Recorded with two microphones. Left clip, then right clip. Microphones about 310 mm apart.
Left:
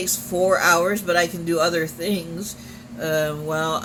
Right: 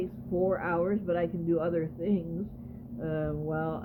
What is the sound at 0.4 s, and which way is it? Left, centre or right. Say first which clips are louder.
Speech: left 12 dB; centre.